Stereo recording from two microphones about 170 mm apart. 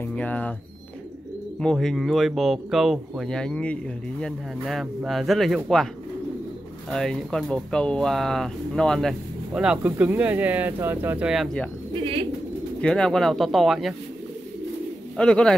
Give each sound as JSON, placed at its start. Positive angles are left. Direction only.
{"t": 0.0, "sound": "speech", "side_deg": 10}
{"t": 1.6, "sound": "speech", "side_deg": 5}
{"t": 6.9, "sound": "speech", "side_deg": 0}
{"t": 11.9, "sound": "bird", "side_deg": -35}
{"t": 12.8, "sound": "speech", "side_deg": 5}
{"t": 15.1, "sound": "speech", "side_deg": 5}